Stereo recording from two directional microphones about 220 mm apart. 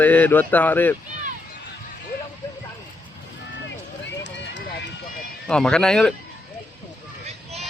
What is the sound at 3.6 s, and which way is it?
Run, 55° left (ahead or behind).